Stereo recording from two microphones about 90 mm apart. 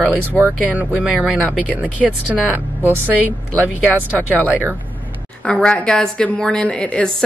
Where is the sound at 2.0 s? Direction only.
5° left (ahead or behind).